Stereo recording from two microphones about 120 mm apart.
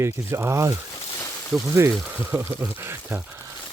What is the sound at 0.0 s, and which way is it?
Speech, 20° right (ahead or behind).